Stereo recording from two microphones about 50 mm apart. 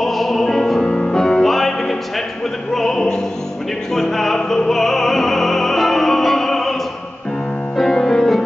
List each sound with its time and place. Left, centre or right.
0.0 s music: centre
1.2 s music: centre
2.7 s opera: centre
3.9 s music: centre